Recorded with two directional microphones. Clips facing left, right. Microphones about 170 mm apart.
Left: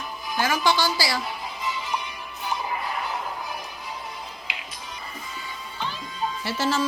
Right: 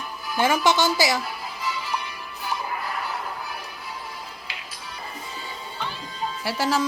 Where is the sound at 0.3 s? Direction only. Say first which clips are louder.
Right 3 dB; 25° right (ahead or behind).